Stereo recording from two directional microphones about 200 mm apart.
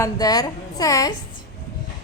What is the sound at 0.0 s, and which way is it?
A woman's voice, 20° left (ahead or behind).